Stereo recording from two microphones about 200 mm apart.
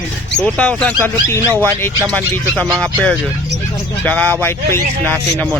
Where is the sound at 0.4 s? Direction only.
5° left (ahead or behind).